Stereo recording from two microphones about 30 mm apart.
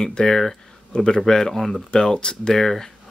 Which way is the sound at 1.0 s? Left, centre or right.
Centre.